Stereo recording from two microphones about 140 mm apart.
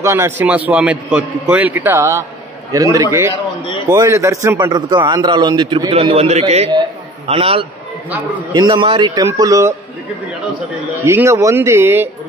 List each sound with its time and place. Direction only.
0.0 s a man's voice: 20° right (ahead or behind)
5.9 s a man's voice: 45° right (ahead or behind)
9.2 s a man's voice: 20° right (ahead or behind)
11.1 s a man's voice: 20° right (ahead or behind)